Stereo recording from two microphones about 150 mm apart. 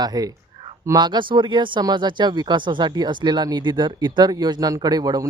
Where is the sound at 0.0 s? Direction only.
25° right (ahead or behind).